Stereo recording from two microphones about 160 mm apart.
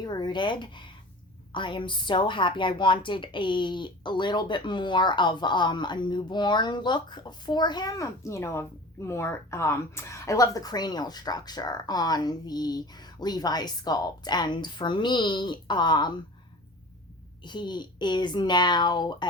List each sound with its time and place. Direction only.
0.0 s a woman's voice: 25° left (ahead or behind)
17.4 s a woman's voice: 30° left (ahead or behind)